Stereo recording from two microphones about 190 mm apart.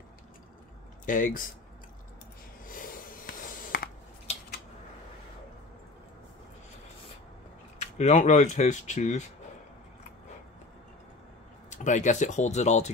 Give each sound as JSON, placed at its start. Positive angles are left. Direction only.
{"t": 1.0, "sound": "speech", "side_deg": 45}
{"t": 2.6, "sound": "a sound", "side_deg": 45}
{"t": 7.8, "sound": "speech", "side_deg": 35}
{"t": 11.7, "sound": "speech", "side_deg": 40}